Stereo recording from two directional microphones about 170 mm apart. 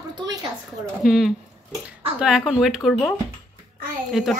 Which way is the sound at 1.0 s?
Centre (ahead or behind).